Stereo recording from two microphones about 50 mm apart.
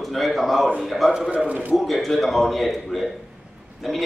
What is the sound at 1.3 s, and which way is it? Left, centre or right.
Speech, right.